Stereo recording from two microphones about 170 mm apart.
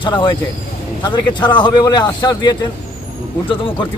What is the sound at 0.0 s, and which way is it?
Speech, 30° left (ahead or behind).